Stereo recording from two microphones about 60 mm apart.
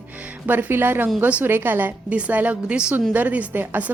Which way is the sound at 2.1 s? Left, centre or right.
Right.